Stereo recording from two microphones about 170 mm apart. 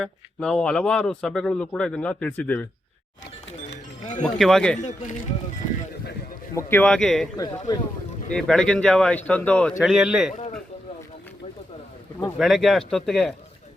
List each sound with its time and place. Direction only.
0.0 s a man's voice: 5° left (ahead or behind)
4.2 s a man's voice: centre (ahead or behind)
4.8 s speech: 45° left (ahead or behind)
6.5 s a man's voice: 15° left (ahead or behind)
7.3 s speech: 20° left (ahead or behind)
8.3 s a man's voice: 5° left (ahead or behind)
12.4 s a man's voice: centre (ahead or behind)